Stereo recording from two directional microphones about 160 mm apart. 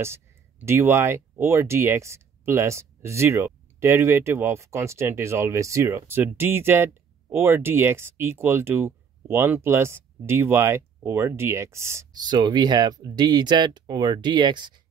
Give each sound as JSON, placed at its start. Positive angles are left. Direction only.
{"t": 0.0, "sound": "speech", "side_deg": -15}